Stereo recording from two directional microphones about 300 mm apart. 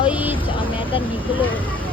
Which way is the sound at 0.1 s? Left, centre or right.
Centre.